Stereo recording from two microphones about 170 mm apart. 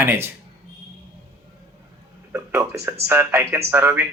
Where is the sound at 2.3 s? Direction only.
15° right (ahead or behind).